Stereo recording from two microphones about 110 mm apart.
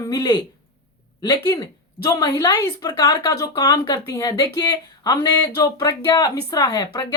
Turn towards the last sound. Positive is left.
turn(degrees=40)  # may be behind; listen again after turning